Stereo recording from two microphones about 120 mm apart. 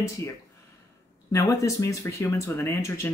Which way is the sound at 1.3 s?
25° left (ahead or behind).